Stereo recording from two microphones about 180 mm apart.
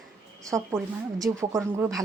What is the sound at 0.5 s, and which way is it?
Speech, 15° right (ahead or behind).